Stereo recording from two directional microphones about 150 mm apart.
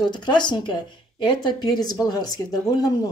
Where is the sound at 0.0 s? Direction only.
30° left (ahead or behind).